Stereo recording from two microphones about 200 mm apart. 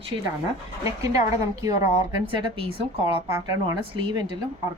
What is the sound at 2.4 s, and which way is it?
Speech, 25° right (ahead or behind).